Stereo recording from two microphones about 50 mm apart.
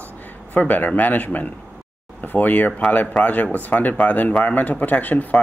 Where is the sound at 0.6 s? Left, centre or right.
Left.